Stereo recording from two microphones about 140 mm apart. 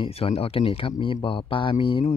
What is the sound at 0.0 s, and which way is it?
A man's voice, 45° left (ahead or behind).